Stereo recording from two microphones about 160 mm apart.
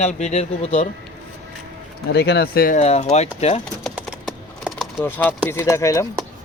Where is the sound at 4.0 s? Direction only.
Centre (ahead or behind).